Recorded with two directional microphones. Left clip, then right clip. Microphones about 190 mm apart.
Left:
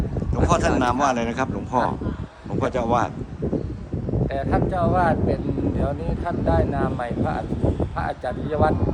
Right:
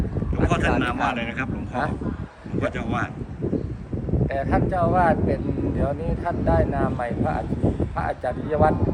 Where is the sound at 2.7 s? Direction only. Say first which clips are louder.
Left 7 dB; 15° left (ahead or behind).